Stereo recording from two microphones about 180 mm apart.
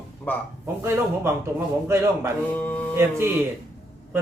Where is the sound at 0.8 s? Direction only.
15° right (ahead or behind).